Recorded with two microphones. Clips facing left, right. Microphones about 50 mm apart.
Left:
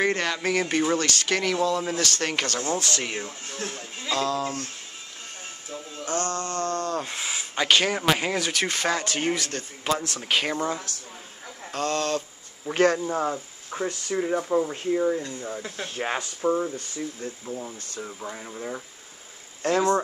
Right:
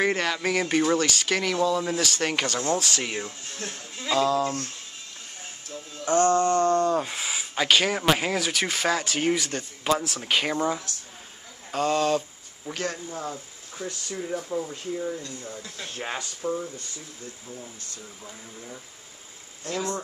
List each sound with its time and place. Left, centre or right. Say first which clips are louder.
0.0 s speech: even; centre
3.3 s speech: left 2 dB; left
4.0 s speech: right 3 dB; centre
6.0 s a sound: right 8 dB; right
7.0 s speech: right 1 dB; centre
12.7 s speech: left 7 dB; centre
13.2 s speech: left 7 dB; left
15.9 s speech: left 3 dB; centre
16.4 s speech: left 6 dB; left
16.7 s speech: left 8 dB; left
19.6 s speech: left 9 dB; left